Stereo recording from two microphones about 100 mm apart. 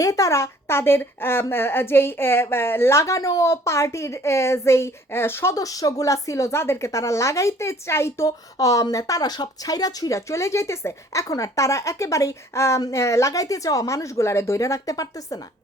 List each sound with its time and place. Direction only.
0.0 s a woman's voice: 35° left (ahead or behind)
5.5 s speech: 35° left (ahead or behind)